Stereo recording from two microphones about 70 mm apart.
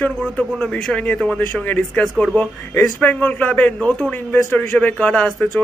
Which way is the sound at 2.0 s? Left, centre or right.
Centre.